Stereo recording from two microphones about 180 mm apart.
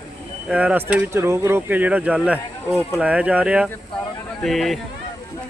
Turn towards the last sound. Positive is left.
turn(degrees=0)  # may be behind; listen again after turning